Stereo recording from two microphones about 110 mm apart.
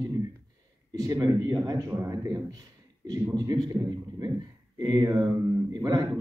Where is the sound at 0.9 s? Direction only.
35° right (ahead or behind).